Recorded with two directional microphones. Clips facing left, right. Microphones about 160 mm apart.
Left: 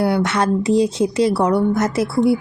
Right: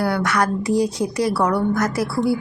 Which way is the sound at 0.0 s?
25° left (ahead or behind).